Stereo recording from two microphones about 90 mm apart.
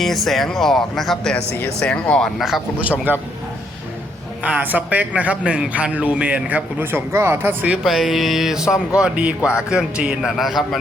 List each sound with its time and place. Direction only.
0.0 s speech: 5° left (ahead or behind)
3.1 s speech: 20° right (ahead or behind)
4.4 s a man's voice: 20° right (ahead or behind)
7.7 s a man's voice: centre (ahead or behind)